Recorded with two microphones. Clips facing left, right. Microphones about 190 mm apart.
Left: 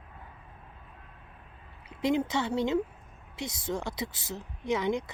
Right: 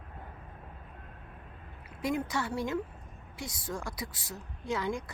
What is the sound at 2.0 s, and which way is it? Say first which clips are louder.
Speech: left 4 dB; 20° left (ahead or behind).